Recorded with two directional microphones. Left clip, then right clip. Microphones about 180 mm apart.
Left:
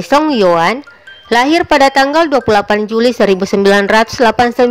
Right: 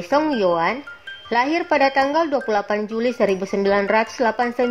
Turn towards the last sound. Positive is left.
turn(degrees=30)  # may be behind; listen again after turning